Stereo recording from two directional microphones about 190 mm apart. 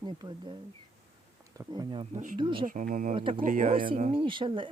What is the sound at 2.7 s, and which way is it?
Speech, 45° right (ahead or behind).